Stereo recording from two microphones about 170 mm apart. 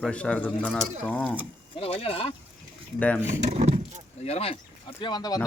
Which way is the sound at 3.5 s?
40° right (ahead or behind).